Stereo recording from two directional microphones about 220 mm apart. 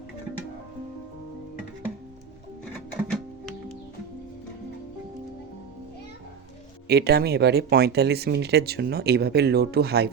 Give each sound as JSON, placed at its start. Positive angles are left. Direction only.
{"t": 6.8, "sound": "speech", "side_deg": -45}